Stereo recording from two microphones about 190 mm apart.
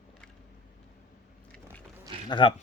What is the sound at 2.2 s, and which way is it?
Speech, 25° left (ahead or behind).